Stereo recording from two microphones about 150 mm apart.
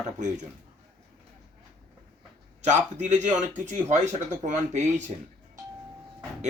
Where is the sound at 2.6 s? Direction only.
50° right (ahead or behind).